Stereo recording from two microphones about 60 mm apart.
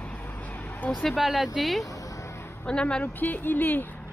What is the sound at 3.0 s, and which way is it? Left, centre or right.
Speech, left.